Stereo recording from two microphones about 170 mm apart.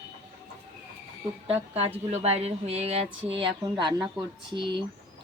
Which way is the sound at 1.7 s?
35° right (ahead or behind).